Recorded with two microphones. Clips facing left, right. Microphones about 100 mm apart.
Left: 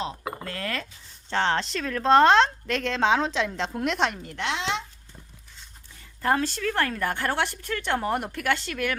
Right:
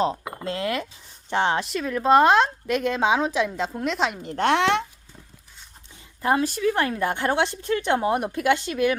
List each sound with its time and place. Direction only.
0.4 s speech: 20° right (ahead or behind); by 4.2 s centre (ahead or behind)
4.4 s speech: 55° right (ahead or behind)
6.2 s speech: 15° right (ahead or behind)